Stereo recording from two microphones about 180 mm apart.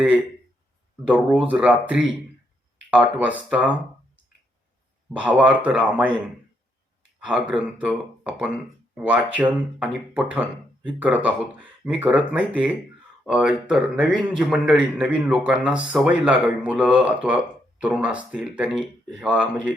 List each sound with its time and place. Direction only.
1.0 s speech: 5° right (ahead or behind)
5.0 s speech: 10° right (ahead or behind)
7.2 s speech: 5° right (ahead or behind)